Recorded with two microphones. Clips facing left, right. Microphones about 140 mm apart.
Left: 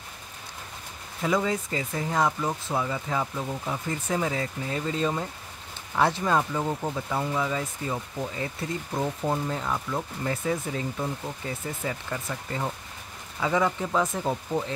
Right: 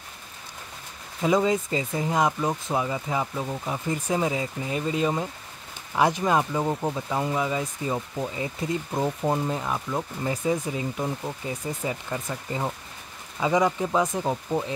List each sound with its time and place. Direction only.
1.2 s speech: 20° right (ahead or behind)